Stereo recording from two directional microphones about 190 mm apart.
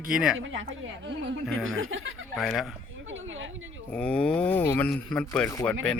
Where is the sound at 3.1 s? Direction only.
90° right.